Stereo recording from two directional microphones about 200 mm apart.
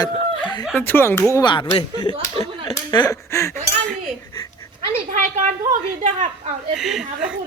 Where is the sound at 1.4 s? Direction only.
20° left (ahead or behind).